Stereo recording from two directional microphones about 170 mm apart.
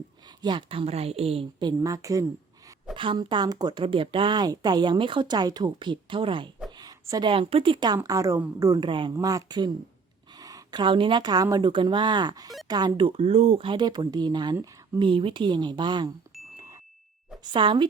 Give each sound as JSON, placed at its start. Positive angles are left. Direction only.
{"t": 0.4, "sound": "a woman's voice", "side_deg": -30}
{"t": 17.5, "sound": "speech", "side_deg": -30}